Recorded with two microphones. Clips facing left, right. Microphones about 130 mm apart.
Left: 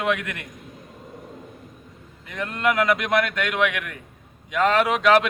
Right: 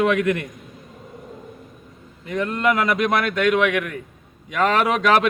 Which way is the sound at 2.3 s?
35° right (ahead or behind).